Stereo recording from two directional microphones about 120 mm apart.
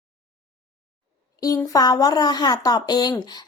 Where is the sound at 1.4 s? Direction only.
30° left (ahead or behind).